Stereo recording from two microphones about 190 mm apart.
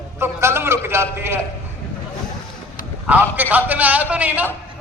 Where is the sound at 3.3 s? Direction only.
10° right (ahead or behind).